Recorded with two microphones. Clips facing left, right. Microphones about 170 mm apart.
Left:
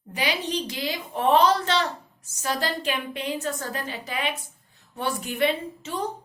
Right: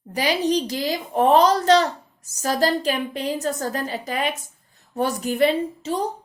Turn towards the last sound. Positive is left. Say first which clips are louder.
# right 6 dB
turn(degrees=-35)  # may be behind; listen again after turning